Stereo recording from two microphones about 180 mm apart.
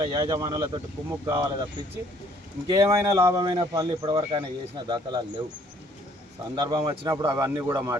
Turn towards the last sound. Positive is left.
turn(degrees=-15)  # may be behind; listen again after turning